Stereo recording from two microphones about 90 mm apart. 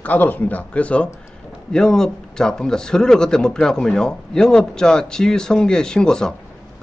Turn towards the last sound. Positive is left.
turn(degrees=5)  # may be behind; listen again after turning